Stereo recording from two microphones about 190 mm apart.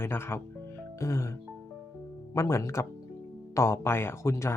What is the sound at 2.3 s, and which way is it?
Speech, 15° left (ahead or behind).